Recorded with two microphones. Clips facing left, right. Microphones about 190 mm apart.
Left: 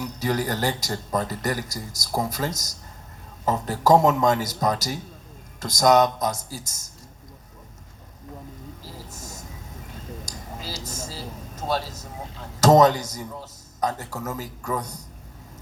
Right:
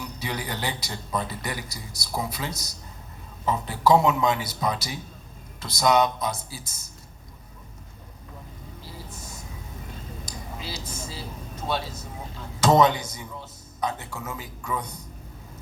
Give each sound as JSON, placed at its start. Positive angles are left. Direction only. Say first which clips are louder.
{"t": 0.0, "sound": "a man's voice", "louder": "left 7 dB", "side_deg": 45}
{"t": 8.8, "sound": "vehicle", "louder": "left 1 dB", "side_deg": 40}
{"t": 10.2, "sound": "a sound", "louder": "even", "side_deg": 40}
{"t": 12.5, "sound": "speech", "louder": "left 3 dB", "side_deg": 40}